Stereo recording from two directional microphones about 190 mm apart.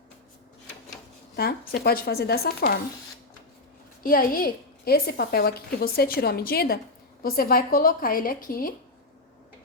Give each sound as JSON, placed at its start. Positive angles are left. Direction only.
{"t": 1.4, "sound": "speech", "side_deg": 55}
{"t": 4.0, "sound": "a woman's voice", "side_deg": 50}